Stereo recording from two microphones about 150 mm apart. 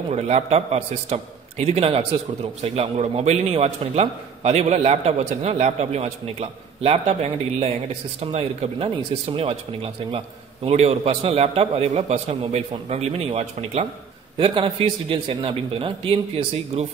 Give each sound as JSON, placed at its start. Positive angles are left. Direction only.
{"t": 0.1, "sound": "a man's voice", "side_deg": -45}
{"t": 14.4, "sound": "a man's voice", "side_deg": -35}